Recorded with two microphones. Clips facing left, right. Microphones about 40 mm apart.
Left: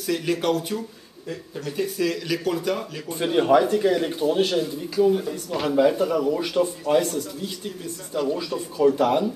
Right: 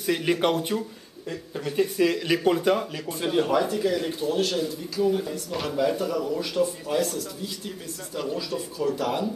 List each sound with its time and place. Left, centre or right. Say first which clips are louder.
0.0 s speech: right 1 dB; centre
3.1 s a man's voice: left 6 dB; centre
5.1 s a man's voice: left 3 dB; centre
8.1 s a man's voice: left 6 dB; centre
8.7 s a man's voice: left 8 dB; left